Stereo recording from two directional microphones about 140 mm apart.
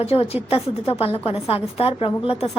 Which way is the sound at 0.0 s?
45° left (ahead or behind).